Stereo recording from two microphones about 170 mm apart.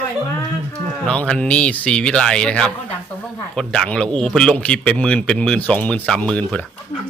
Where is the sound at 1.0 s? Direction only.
5° left (ahead or behind).